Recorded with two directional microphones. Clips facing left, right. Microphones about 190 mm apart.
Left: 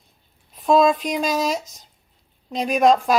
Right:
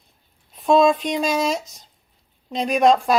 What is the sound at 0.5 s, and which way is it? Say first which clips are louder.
Speech: right 1 dB; centre (ahead or behind).